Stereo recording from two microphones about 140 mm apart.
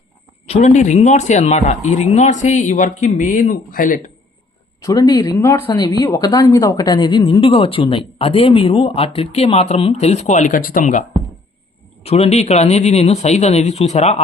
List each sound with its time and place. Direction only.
0.4 s a sound: 45° left (ahead or behind)
0.7 s speech: 55° left (ahead or behind); by 4.0 s 80° left
4.8 s speech: 25° left (ahead or behind); by 11.0 s 70° left (ahead or behind)
12.0 s speech: 45° left (ahead or behind)